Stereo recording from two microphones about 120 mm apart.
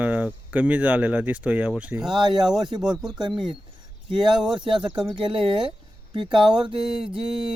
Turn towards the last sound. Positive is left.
turn(degrees=-5)  # may be behind; listen again after turning